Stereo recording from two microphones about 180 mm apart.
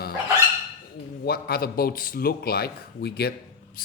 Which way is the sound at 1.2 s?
60° left (ahead or behind).